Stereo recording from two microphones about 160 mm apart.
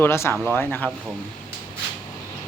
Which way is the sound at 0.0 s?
15° left (ahead or behind).